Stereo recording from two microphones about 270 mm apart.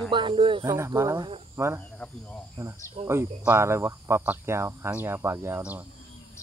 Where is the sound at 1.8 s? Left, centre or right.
Centre.